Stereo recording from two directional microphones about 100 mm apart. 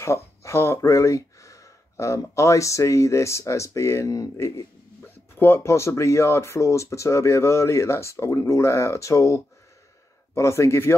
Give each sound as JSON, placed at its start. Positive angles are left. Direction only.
{"t": 0.0, "sound": "speech", "side_deg": 30}
{"t": 5.0, "sound": "speech", "side_deg": 20}